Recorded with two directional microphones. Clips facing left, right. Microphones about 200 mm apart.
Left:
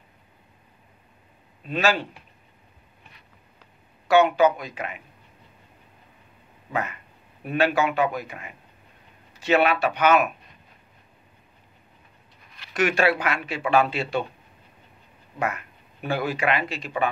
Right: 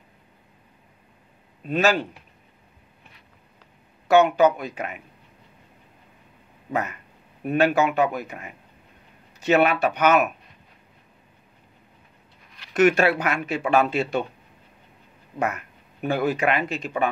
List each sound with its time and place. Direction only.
1.7 s speech: 45° right (ahead or behind)
4.1 s speech: 40° right (ahead or behind)
6.7 s a sound: 40° right (ahead or behind)
7.4 s speech: 45° right (ahead or behind)
12.7 s speech: 45° right (ahead or behind)
15.3 s speech: 40° right (ahead or behind)